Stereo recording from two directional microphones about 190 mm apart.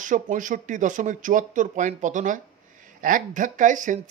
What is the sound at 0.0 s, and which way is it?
Speech, 40° right (ahead or behind).